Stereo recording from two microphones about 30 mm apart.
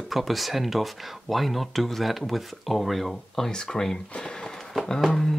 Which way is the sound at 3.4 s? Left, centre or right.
Centre.